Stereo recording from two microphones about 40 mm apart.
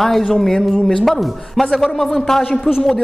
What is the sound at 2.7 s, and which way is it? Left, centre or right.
Speech, centre.